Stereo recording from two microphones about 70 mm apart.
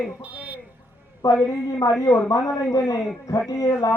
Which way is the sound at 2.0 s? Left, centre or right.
Left.